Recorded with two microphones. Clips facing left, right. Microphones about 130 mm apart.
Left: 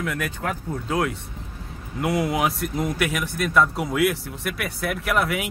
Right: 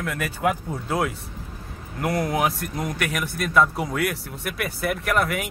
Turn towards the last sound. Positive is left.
turn(degrees=0)  # may be behind; listen again after turning